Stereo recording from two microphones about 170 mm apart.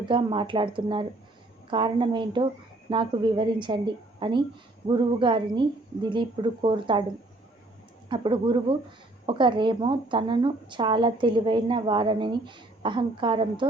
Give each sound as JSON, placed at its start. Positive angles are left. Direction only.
{"t": 0.1, "sound": "speech", "side_deg": -30}
{"t": 8.1, "sound": "speech", "side_deg": -30}